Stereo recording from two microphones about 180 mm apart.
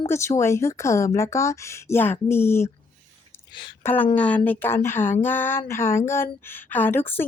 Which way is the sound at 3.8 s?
10° left (ahead or behind).